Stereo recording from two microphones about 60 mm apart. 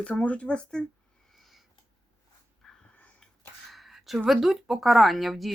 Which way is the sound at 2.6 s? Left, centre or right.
Centre.